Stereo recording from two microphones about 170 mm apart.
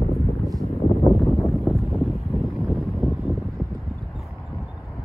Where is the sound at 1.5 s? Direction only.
Centre (ahead or behind).